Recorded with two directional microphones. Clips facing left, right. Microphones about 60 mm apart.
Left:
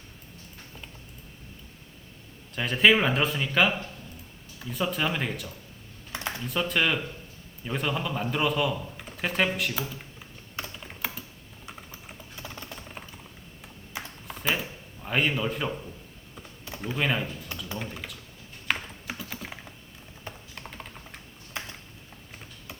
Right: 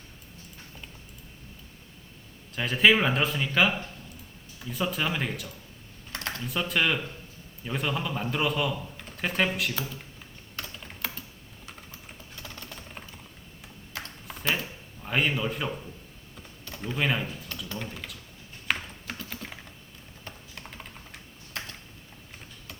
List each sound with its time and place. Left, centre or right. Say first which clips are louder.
2.6 s speech: even; centre
6.1 s computer keyboard: left 1 dB; centre
6.4 s speech: left 1 dB; centre
7.6 s a sound: left 1 dB; centre
11.6 s typing: left 2 dB; centre
14.3 s a sound: left 1 dB; centre
16.3 s computer keyboard: left 2 dB; centre
17.0 s speech: even; centre
17.7 s typing: left 1 dB; centre
20.3 s computer keyboard: left 3 dB; centre
20.6 s computer keyboard: left 2 dB; centre